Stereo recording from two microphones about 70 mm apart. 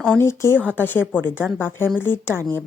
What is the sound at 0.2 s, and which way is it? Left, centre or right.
A woman's voice, left.